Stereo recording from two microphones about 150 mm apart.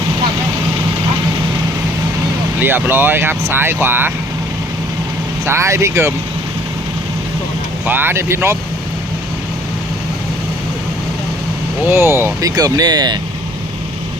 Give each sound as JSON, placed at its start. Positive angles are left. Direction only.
{"t": 2.6, "sound": "speech", "side_deg": -15}
{"t": 5.5, "sound": "speech", "side_deg": -20}
{"t": 7.9, "sound": "speech", "side_deg": -15}
{"t": 11.9, "sound": "speech", "side_deg": -15}